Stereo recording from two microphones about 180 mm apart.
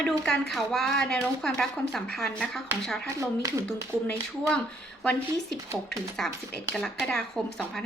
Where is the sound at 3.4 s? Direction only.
15° right (ahead or behind).